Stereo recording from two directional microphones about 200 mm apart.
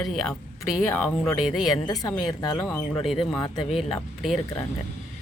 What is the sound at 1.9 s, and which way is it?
Speech, 20° left (ahead or behind).